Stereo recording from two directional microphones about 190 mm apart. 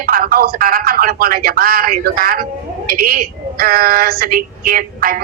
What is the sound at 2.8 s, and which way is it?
Female singing, 50° right (ahead or behind).